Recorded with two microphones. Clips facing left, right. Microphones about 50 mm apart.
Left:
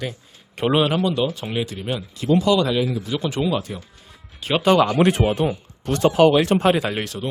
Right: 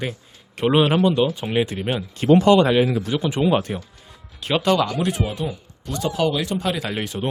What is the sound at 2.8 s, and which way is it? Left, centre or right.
Speech, right.